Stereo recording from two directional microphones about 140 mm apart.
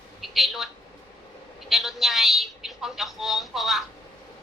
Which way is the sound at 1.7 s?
Centre (ahead or behind).